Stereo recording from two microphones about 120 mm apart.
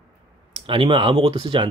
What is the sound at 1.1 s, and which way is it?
Speech, 55° right (ahead or behind).